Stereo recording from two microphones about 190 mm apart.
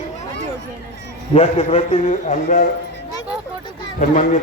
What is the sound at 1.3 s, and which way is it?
A man's voice, 35° left (ahead or behind).